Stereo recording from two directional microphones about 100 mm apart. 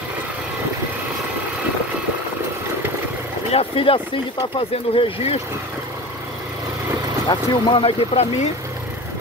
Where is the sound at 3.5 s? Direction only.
70° left (ahead or behind).